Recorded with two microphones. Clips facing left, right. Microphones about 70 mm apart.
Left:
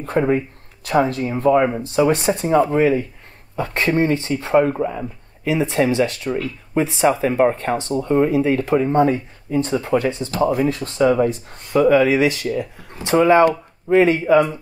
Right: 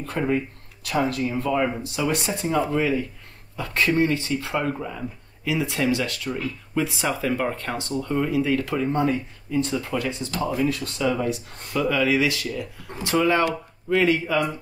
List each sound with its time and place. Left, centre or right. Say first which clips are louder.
0.0 s speech: left 6 dB; left
10.7 s speech: left 7 dB; left